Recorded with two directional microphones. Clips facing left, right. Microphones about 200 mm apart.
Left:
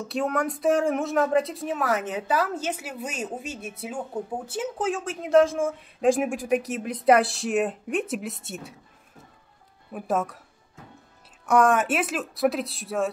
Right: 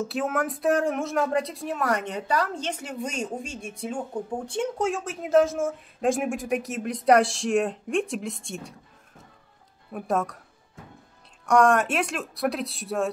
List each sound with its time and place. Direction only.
0.0 s speech: centre (ahead or behind)
9.9 s speech: centre (ahead or behind)
11.4 s speech: 5° left (ahead or behind)